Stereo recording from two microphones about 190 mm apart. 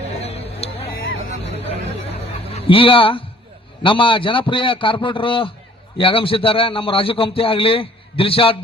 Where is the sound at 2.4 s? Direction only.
30° left (ahead or behind).